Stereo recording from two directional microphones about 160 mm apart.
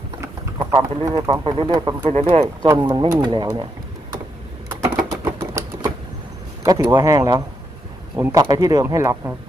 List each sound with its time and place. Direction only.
0.2 s a sound: 20° right (ahead or behind)
2.0 s speech: 40° right (ahead or behind)
2.4 s speech: 20° right (ahead or behind)
4.6 s typing: 20° right (ahead or behind)
6.6 s speech: 25° right (ahead or behind)